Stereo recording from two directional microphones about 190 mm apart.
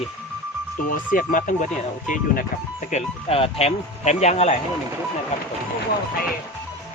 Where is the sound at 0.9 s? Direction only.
45° left (ahead or behind).